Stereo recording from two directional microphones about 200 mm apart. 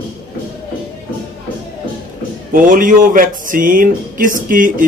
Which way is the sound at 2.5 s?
45° right (ahead or behind).